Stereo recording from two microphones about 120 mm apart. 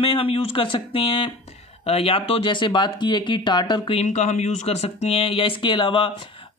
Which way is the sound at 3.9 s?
75° left (ahead or behind).